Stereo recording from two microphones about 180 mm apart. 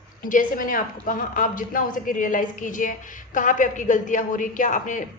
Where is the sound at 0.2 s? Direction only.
50° left (ahead or behind).